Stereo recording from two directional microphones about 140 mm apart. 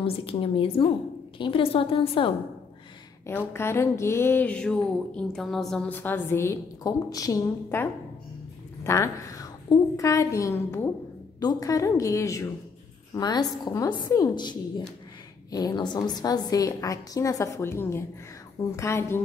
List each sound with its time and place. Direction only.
0.0 s a woman's voice: 40° left (ahead or behind)
3.3 s a sound: 15° left (ahead or behind)
8.8 s a woman's voice: 20° left (ahead or behind)